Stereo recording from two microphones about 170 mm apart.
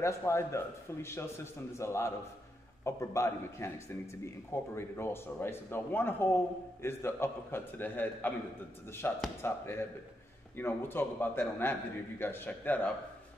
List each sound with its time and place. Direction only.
0.0 s speech: 15° left (ahead or behind)